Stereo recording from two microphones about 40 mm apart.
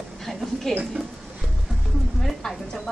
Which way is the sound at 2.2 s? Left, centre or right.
Centre.